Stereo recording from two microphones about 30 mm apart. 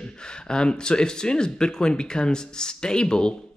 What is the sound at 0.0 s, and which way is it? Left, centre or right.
Speech, left.